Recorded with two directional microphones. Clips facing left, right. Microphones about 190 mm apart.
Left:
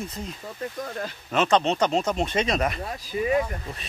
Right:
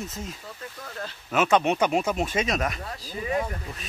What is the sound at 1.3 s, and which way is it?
Speech, 5° right (ahead or behind).